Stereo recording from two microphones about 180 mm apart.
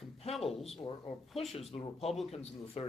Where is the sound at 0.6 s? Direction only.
35° left (ahead or behind).